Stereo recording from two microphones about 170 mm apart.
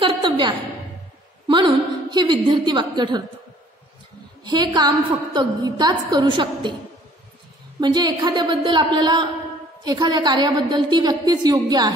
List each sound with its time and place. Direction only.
0.0 s a sound: 25° right (ahead or behind)
1.5 s a woman's voice: 25° right (ahead or behind)
4.5 s a woman's voice: 25° right (ahead or behind)
7.8 s a woman's voice: 25° right (ahead or behind)